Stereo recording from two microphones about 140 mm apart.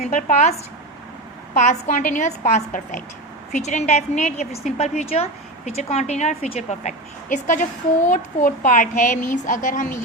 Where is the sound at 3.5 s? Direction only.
60° left (ahead or behind).